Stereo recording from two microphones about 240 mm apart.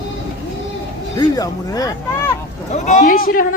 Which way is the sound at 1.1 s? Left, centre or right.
Centre.